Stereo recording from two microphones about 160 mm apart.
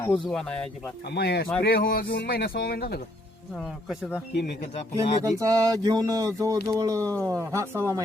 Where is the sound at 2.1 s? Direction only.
90° left; by 3.0 s 75° left (ahead or behind).